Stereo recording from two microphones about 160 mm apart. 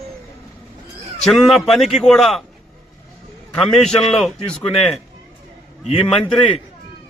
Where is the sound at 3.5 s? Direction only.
5° left (ahead or behind).